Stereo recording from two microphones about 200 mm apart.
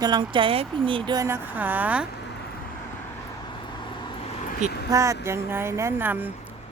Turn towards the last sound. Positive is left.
turn(degrees=-10)  # may be behind; listen again after turning